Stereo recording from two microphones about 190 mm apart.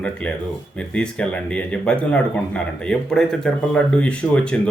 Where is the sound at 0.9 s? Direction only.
5° left (ahead or behind).